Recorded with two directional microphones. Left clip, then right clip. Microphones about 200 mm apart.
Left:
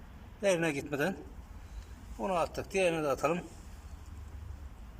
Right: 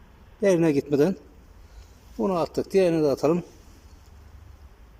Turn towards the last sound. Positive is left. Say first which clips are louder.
# right 9 dB
turn(degrees=-25)  # may be behind; listen again after turning